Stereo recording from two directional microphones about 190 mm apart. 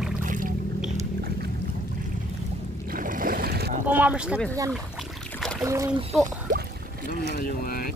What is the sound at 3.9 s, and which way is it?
Speech, 10° right (ahead or behind).